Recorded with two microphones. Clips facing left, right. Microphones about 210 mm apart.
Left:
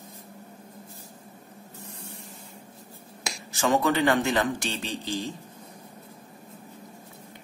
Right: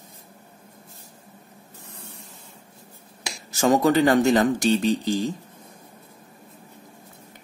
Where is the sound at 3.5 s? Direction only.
40° right (ahead or behind).